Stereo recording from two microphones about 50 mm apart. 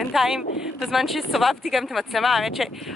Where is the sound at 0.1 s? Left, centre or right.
Centre.